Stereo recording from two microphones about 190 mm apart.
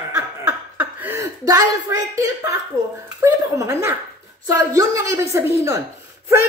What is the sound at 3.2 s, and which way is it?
A woman's voice, 15° right (ahead or behind).